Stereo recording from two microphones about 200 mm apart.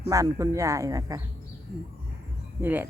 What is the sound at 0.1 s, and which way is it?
Speech, 15° right (ahead or behind).